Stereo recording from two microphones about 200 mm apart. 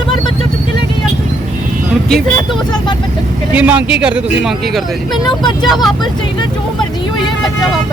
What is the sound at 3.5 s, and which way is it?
Speech, 5° right (ahead or behind).